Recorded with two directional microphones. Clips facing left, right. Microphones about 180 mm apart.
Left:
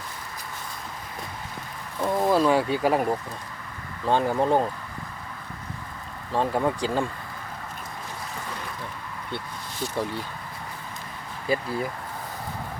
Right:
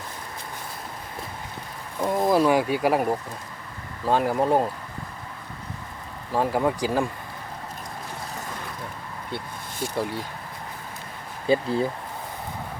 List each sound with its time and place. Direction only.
2.0 s speech: 15° right (ahead or behind)
6.3 s speech: 10° right (ahead or behind)
9.9 s speech: 10° right (ahead or behind)
11.4 s speech: 25° right (ahead or behind)